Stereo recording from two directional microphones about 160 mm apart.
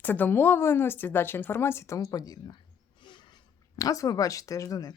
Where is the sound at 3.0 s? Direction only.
30° left (ahead or behind).